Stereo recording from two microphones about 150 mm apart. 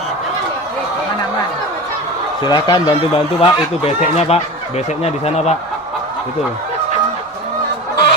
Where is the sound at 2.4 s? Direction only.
30° left (ahead or behind); by 5.6 s 45° left (ahead or behind).